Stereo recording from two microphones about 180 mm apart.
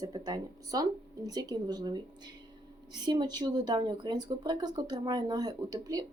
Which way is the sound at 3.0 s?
25° right (ahead or behind).